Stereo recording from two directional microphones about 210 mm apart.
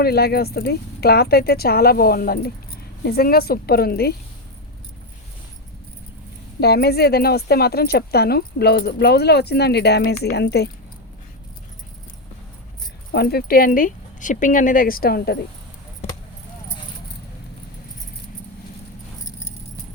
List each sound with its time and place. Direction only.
0.0 s speech: 50° left (ahead or behind)
6.6 s speech: 50° left (ahead or behind)
13.1 s speech: 45° left (ahead or behind)